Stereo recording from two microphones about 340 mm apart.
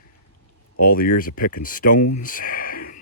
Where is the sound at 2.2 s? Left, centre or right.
Left.